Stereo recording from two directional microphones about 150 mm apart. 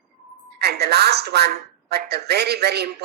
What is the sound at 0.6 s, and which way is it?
Speech, 90° right.